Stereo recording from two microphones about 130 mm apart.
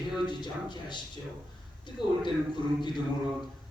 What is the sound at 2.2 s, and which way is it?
Speech, 35° left (ahead or behind).